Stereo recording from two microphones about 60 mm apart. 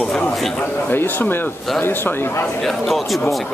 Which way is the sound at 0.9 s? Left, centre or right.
Left.